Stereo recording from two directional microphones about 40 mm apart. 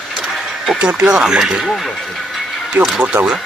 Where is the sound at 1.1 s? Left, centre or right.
Centre.